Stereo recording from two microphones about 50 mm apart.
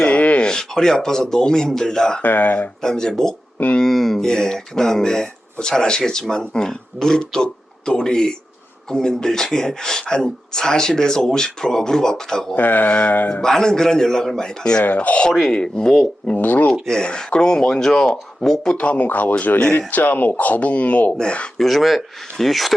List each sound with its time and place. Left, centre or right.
0.0 s a sound: left
0.4 s speech: centre
2.2 s speech: left
2.8 s speech: centre
12.5 s speech: left
13.4 s speech: centre
15.3 s speech: centre
15.5 s speech: left
16.2 s speech: left
16.8 s speech: centre
18.8 s speech: left
21.6 s speech: centre